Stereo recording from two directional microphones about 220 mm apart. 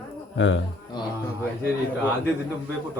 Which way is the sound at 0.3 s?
60° left (ahead or behind).